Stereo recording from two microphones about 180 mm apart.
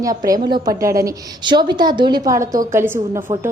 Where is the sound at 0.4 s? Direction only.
25° right (ahead or behind).